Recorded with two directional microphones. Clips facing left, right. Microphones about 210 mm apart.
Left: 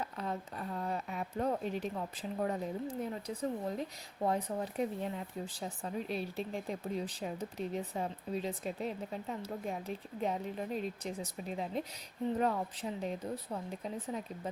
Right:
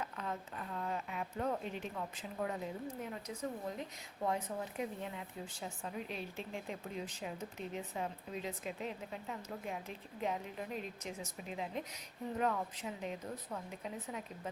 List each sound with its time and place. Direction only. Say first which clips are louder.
0.0 s speech: left 3 dB; 35° left (ahead or behind)